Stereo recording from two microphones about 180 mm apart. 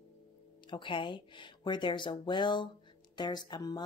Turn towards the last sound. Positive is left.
turn(degrees=20)  # may be behind; listen again after turning